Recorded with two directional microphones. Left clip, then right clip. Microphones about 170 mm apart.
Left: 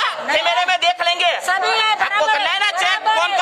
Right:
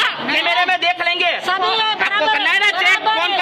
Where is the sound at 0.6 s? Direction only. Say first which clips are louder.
Even; 25° left (ahead or behind).